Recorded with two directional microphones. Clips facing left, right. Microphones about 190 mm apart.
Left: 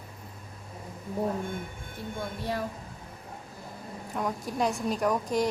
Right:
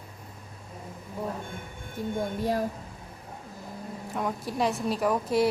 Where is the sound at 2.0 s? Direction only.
45° right (ahead or behind).